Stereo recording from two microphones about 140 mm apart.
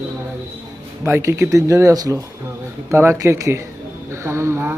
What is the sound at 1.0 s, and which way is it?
Speech, 20° right (ahead or behind).